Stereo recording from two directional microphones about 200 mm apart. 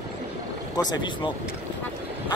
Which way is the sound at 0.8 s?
20° left (ahead or behind).